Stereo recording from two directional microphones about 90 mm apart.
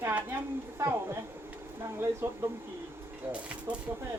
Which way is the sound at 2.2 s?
25° right (ahead or behind).